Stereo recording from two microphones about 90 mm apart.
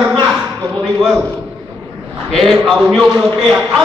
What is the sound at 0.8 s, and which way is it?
A man's voice, centre (ahead or behind).